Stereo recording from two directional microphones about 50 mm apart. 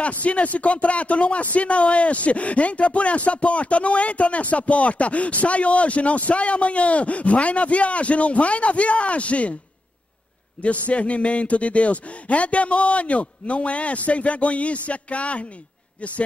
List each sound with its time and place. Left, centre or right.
0.0 s speech: left
10.6 s speech: left